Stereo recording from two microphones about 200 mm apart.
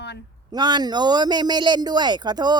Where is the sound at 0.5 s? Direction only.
20° right (ahead or behind).